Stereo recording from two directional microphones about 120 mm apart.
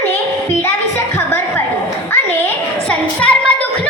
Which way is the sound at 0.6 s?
20° left (ahead or behind).